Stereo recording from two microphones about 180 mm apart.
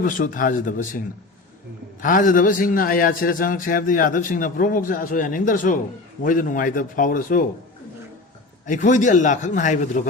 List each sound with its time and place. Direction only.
0.0 s a man's voice: 50° left (ahead or behind)
8.6 s a man's voice: 45° left (ahead or behind)